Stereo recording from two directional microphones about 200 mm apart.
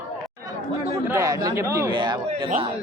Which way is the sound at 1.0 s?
15° right (ahead or behind).